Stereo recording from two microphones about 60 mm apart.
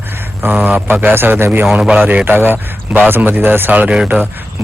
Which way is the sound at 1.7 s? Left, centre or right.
Centre.